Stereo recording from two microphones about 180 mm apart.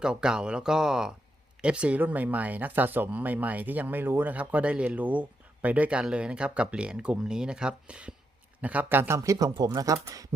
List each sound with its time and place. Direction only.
0.0 s speech: 5° right (ahead or behind)